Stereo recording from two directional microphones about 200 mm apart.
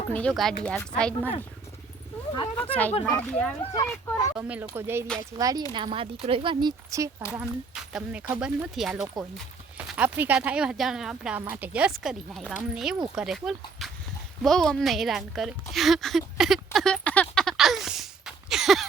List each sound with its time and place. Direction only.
0.1 s speech: 5° left (ahead or behind)
2.6 s speech: 10° left (ahead or behind)
4.4 s speech: 5° right (ahead or behind)
7.8 s speech: 5° right (ahead or behind)
14.4 s a sound: centre (ahead or behind)